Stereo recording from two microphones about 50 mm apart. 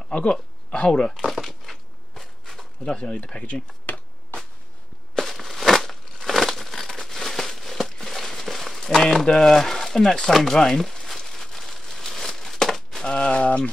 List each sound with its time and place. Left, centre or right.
0.1 s speech: left
1.2 s a sound: centre
2.9 s speech: left
3.8 s finger snapping: left
5.1 s crumpling: centre
13.1 s a sound: left